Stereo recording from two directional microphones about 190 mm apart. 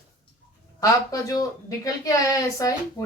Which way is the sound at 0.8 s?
20° left (ahead or behind).